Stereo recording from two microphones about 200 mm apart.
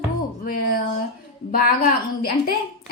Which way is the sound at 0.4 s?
45° left (ahead or behind).